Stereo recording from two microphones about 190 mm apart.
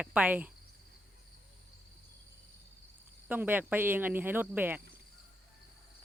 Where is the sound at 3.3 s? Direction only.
10° right (ahead or behind).